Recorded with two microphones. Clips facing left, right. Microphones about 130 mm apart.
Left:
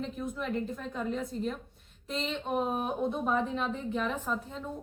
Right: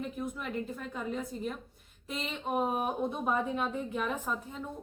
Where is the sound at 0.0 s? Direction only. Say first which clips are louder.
Left 2 dB; 5° right (ahead or behind).